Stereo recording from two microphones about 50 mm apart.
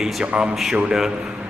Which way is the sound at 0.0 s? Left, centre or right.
Centre.